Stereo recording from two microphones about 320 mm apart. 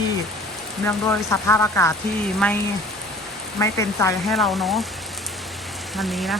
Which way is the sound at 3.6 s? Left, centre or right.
Centre.